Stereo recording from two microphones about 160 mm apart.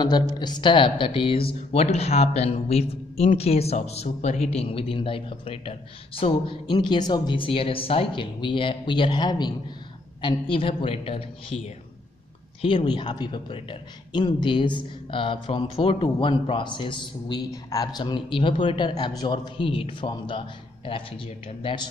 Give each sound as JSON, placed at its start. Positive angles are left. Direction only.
{"t": 0.0, "sound": "speech", "side_deg": 25}